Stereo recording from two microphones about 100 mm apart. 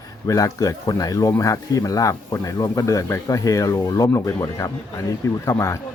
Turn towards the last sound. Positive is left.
turn(degrees=35)  # may be behind; listen again after turning